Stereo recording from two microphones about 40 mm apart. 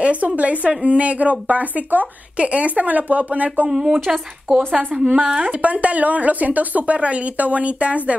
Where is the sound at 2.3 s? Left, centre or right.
Right.